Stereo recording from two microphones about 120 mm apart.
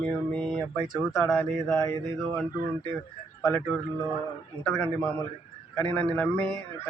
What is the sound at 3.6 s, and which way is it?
Speech, 10° left (ahead or behind).